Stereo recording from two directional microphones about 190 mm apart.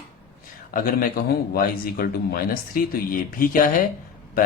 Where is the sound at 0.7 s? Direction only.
50° left (ahead or behind).